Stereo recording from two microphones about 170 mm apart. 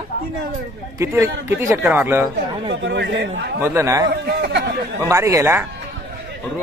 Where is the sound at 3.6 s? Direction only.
15° right (ahead or behind).